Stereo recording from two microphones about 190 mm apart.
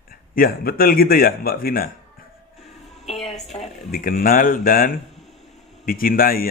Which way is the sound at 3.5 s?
40° left (ahead or behind).